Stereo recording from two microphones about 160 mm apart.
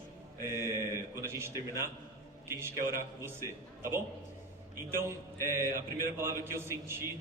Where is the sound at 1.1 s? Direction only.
15° right (ahead or behind).